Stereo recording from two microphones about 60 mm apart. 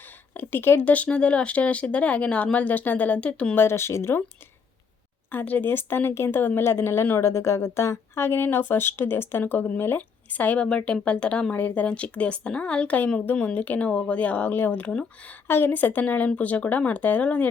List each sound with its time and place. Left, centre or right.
0.3 s speech: left
0.8 s speech: left
3.5 s speech: left
5.3 s a woman's voice: left
7.2 s speech: left
9.4 s speech: left
15.4 s speech: left